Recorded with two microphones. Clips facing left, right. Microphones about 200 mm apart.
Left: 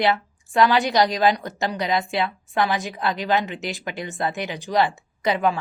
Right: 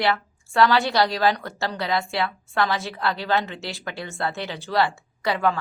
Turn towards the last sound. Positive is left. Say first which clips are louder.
# left 2 dB
turn(degrees=20)  # may be behind; listen again after turning